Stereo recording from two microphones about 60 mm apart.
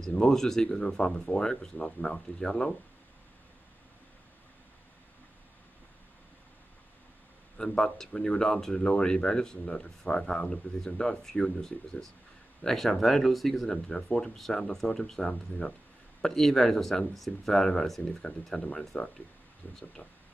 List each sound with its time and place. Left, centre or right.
0.3 s speech: centre
7.5 s speech: centre